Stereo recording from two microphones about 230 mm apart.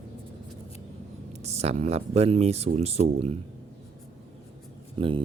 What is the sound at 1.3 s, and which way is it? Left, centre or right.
Speech, right.